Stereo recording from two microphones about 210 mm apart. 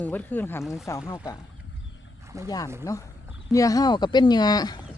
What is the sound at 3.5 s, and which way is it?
Speech, 15° left (ahead or behind).